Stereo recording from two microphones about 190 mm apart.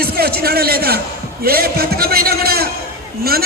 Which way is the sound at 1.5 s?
55° right (ahead or behind).